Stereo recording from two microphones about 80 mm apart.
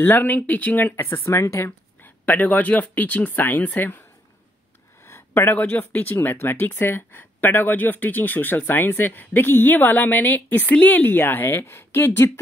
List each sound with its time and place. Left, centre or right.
0.0 s speech: left
2.2 s speech: left
5.0 s speech: left